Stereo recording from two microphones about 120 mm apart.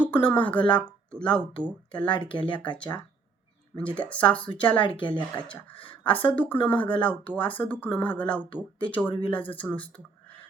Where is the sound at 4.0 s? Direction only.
10° left (ahead or behind).